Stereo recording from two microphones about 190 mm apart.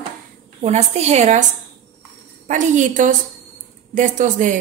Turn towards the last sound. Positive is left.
turn(degrees=-40)  # may be behind; listen again after turning